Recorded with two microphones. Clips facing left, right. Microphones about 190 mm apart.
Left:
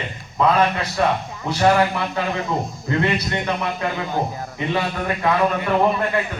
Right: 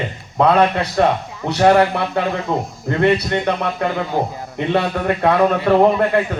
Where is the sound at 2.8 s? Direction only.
60° right (ahead or behind).